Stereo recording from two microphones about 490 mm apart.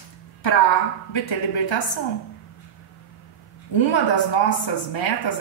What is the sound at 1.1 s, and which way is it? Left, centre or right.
Speech, left.